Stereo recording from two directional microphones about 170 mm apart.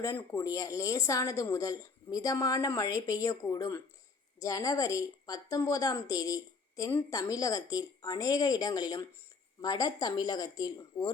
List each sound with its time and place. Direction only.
0.0 s a woman's voice: 15° left (ahead or behind)